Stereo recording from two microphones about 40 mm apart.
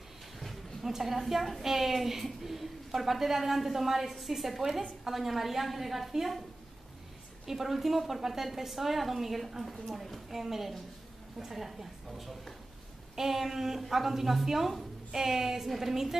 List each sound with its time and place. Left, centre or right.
0.4 s a sound: centre
0.9 s a woman's voice: centre
7.4 s a woman's voice: centre